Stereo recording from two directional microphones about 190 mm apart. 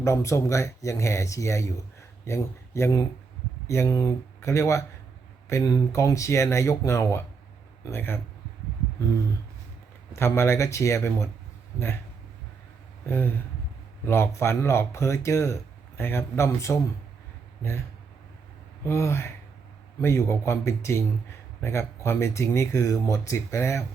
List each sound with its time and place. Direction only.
0.0 s speech: 15° left (ahead or behind)
10.2 s speech: 15° left (ahead or behind)
13.1 s speech: 10° left (ahead or behind)
18.9 s speech: 15° left (ahead or behind)